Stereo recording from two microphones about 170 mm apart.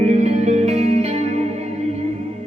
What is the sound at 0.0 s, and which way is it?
Music, 40° right (ahead or behind).